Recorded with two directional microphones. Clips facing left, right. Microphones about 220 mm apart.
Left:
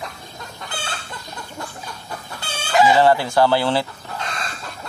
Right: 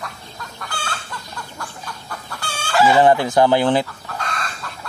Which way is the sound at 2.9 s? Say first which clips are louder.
Right 2 dB; 20° right (ahead or behind).